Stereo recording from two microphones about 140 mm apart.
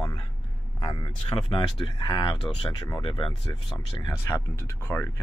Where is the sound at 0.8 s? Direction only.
35° left (ahead or behind); by 5.0 s 15° left (ahead or behind).